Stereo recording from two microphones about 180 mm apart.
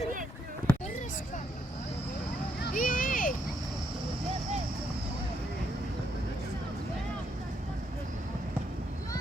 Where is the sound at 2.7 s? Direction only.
50° left (ahead or behind).